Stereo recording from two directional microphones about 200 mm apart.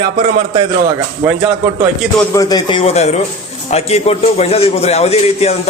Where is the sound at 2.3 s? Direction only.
20° left (ahead or behind).